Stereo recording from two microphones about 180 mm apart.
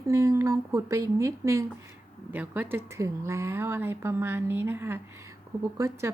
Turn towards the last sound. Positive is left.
turn(degrees=-15)  # may be behind; listen again after turning